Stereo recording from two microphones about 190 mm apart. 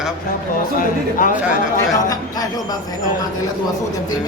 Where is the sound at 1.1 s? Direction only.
45° left (ahead or behind).